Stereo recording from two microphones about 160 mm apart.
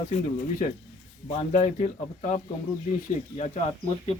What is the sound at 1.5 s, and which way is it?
Speech, 45° left (ahead or behind).